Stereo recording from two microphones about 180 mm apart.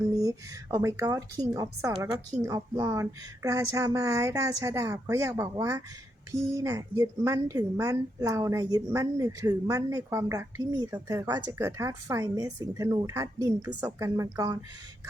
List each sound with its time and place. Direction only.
0.1 s a woman's voice: 20° right (ahead or behind)